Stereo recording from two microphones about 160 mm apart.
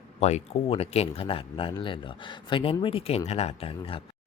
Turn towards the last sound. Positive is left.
turn(degrees=35)  # may be behind; listen again after turning